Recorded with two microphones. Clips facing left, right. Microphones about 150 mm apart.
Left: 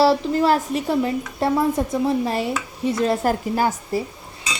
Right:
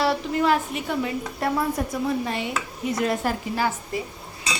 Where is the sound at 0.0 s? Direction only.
35° left (ahead or behind).